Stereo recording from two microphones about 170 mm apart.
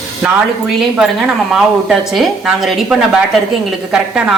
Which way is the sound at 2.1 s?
Centre (ahead or behind).